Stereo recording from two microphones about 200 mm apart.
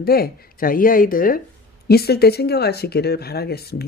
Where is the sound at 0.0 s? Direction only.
50° left (ahead or behind).